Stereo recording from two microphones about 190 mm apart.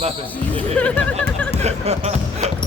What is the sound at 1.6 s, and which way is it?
Speech, 35° right (ahead or behind).